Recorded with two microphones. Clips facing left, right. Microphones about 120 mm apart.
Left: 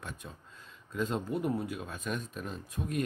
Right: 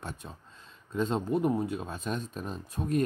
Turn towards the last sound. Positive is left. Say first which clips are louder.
# right 5 dB
turn(degrees=-35)  # may be behind; listen again after turning